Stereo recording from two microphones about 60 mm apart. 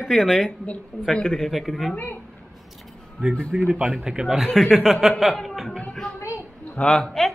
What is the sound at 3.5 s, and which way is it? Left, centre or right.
Speech, centre.